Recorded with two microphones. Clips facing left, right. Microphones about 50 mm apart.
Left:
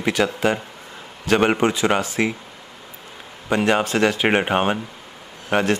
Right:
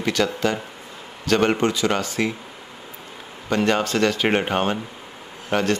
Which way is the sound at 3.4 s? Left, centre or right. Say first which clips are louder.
Left 1 dB; centre.